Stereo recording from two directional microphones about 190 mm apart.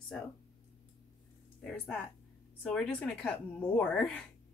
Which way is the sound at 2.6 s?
5° left (ahead or behind).